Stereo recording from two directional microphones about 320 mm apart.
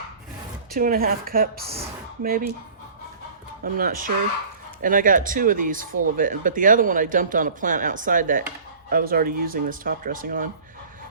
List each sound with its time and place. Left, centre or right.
0.7 s speech: right
3.6 s speech: right